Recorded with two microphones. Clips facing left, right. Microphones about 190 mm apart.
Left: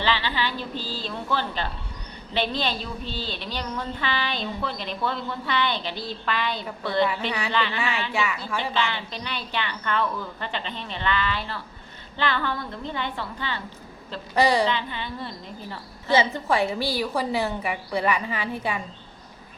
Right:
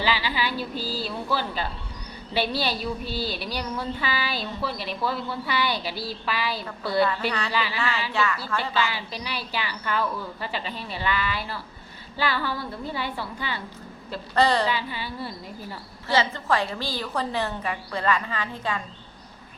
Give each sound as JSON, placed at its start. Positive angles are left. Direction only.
{"t": 0.0, "sound": "a woman's voice", "side_deg": -10}
{"t": 7.8, "sound": "a woman's voice", "side_deg": 15}
{"t": 8.7, "sound": "a woman's voice", "side_deg": -5}
{"t": 14.3, "sound": "a woman's voice", "side_deg": 10}
{"t": 14.7, "sound": "a woman's voice", "side_deg": -10}
{"t": 16.0, "sound": "a woman's voice", "side_deg": 15}